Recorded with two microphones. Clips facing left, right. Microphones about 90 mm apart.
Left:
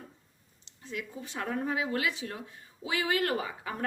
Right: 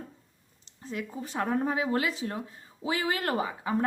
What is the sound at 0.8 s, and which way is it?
A woman's voice, 35° right (ahead or behind).